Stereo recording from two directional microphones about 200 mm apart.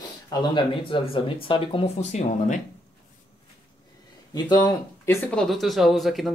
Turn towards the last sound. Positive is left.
turn(degrees=0)  # may be behind; listen again after turning